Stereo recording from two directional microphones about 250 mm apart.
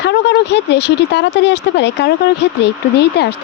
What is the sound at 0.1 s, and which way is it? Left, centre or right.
Speech, left.